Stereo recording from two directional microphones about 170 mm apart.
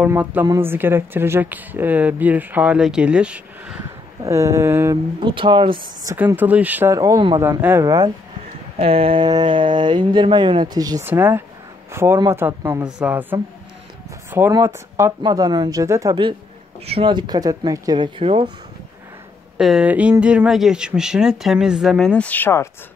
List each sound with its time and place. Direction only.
0.0 s speech: 10° right (ahead or behind)
3.8 s speech: 15° right (ahead or behind)
5.2 s speech: 30° right (ahead or behind)
6.1 s speech: 10° right (ahead or behind)
8.7 s speech: 35° right (ahead or behind); by 13.4 s 10° right (ahead or behind)
14.5 s speech: 20° right (ahead or behind)
19.5 s speech: 5° right (ahead or behind); by 22.7 s 15° left (ahead or behind)